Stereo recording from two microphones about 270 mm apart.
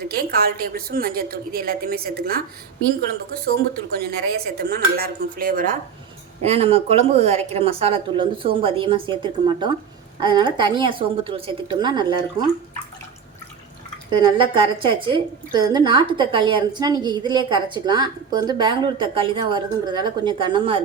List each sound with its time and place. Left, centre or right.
0.1 s speech: right
3.4 s a woman's voice: right; by 12.5 s centre
14.1 s a woman's voice: centre